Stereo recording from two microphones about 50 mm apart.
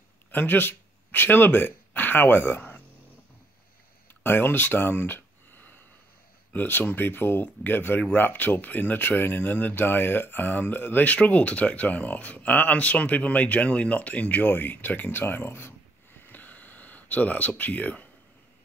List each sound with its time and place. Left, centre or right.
0.3 s speech: left
4.2 s a sound: left
6.5 s speech: left
11.1 s speech: left